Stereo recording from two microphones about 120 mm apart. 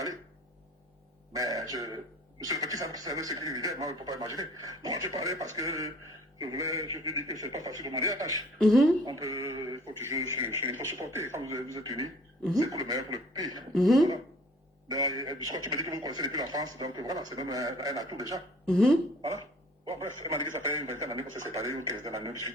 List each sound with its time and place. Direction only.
1.3 s a man's voice: 30° right (ahead or behind)
8.5 s speech: centre (ahead or behind)
9.0 s a man's voice: 25° right (ahead or behind)
13.7 s speech: centre (ahead or behind)
14.8 s a man's voice: 30° right (ahead or behind)
18.6 s speech: 5° left (ahead or behind)
19.9 s a man's voice: 25° right (ahead or behind)